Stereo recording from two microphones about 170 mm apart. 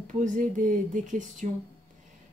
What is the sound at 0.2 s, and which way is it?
Speech, 50° right (ahead or behind).